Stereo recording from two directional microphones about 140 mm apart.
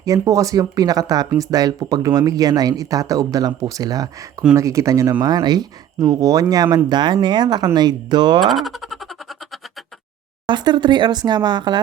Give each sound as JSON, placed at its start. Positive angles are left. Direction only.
{"t": 0.0, "sound": "speech", "side_deg": -25}
{"t": 8.4, "sound": "speech", "side_deg": 0}
{"t": 10.4, "sound": "speech", "side_deg": -35}